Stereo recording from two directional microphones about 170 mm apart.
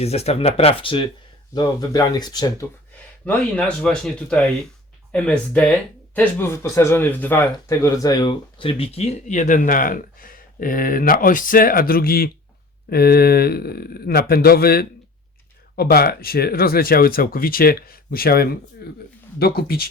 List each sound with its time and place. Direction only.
0.0 s speech: 40° left (ahead or behind)
3.2 s speech: 5° left (ahead or behind); by 19.9 s 65° left (ahead or behind)